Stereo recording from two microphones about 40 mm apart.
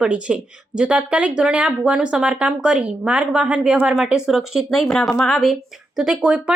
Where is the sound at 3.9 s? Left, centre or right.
Centre.